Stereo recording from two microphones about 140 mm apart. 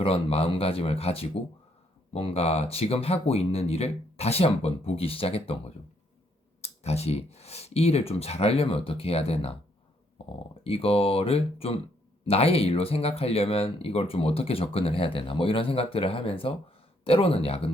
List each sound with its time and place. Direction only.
0.0 s speech: 45° left (ahead or behind)